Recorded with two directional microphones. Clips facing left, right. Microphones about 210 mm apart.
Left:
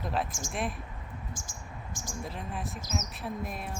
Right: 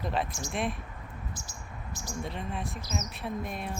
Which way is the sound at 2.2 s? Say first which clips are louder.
Right 2 dB; centre (ahead or behind).